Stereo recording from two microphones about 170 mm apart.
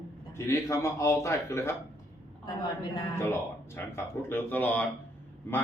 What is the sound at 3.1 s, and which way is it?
Speech, 15° left (ahead or behind).